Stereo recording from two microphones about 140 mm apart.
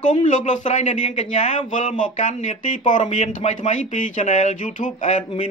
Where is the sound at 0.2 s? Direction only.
60° left (ahead or behind).